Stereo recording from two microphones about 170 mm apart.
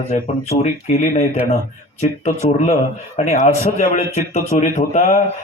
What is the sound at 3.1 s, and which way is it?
Music, 40° left (ahead or behind).